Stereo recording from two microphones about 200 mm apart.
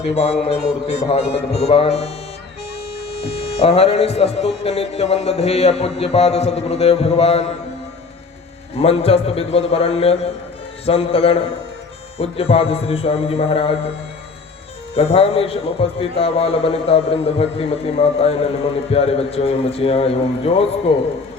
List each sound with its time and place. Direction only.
0.1 s a man's voice: 30° left (ahead or behind)
3.1 s a sound: 60° left (ahead or behind)
3.6 s a man's voice: 30° left (ahead or behind)
8.8 s a man's voice: 30° left (ahead or behind)
14.9 s a man's voice: 30° left (ahead or behind)